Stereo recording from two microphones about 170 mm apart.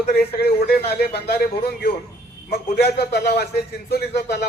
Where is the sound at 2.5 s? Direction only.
65° left (ahead or behind).